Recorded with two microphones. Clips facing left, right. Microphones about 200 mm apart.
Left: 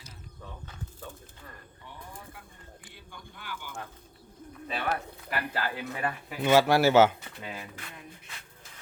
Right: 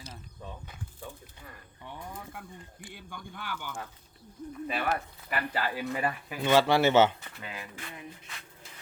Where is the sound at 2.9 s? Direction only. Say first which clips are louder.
Right 8 dB; 55° right (ahead or behind).